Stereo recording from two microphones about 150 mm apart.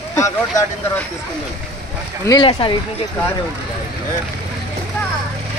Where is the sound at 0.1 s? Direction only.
20° left (ahead or behind).